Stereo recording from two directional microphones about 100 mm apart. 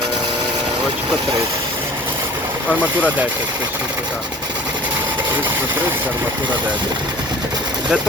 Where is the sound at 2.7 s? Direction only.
15° right (ahead or behind).